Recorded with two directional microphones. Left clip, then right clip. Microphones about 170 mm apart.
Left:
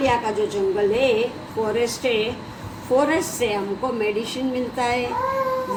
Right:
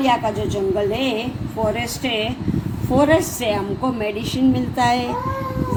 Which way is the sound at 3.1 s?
55° right (ahead or behind).